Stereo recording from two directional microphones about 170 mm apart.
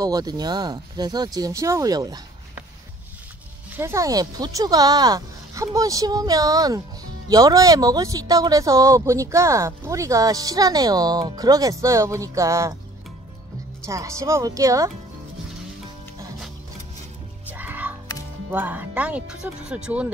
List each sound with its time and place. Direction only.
0.0 s speech: 20° right (ahead or behind)
3.7 s speech: 15° right (ahead or behind)
13.8 s speech: 20° right (ahead or behind)
17.5 s music: 10° right (ahead or behind)
18.5 s speech: 10° right (ahead or behind)